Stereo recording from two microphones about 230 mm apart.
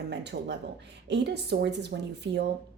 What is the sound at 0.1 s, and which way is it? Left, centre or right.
A woman's voice, right.